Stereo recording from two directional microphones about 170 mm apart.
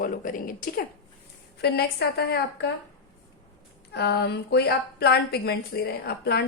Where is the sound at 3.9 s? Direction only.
75° left (ahead or behind).